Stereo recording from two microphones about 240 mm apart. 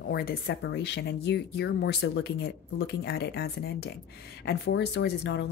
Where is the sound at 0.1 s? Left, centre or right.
Left.